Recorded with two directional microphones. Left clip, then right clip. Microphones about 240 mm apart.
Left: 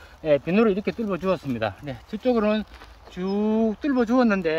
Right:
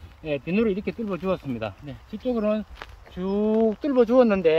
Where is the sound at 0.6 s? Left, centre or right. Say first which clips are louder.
Left 3 dB; centre.